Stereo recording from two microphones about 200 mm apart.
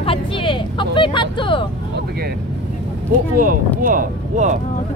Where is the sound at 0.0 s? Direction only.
25° left (ahead or behind).